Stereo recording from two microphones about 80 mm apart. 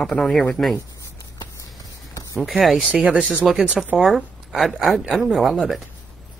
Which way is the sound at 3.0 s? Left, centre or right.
Centre.